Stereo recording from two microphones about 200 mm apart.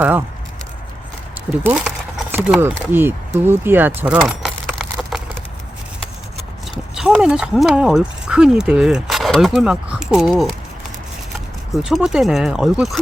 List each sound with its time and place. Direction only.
1.6 s speech: 5° right (ahead or behind)
3.4 s a sound: 10° right (ahead or behind)
6.9 s speech: 5° right (ahead or behind)
11.7 s speech: centre (ahead or behind)